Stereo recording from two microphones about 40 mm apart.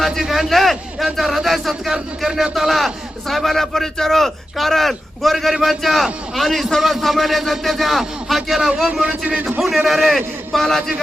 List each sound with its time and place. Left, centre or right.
0.0 s a man's voice: centre
8.9 s speech: right
9.6 s a man's voice: centre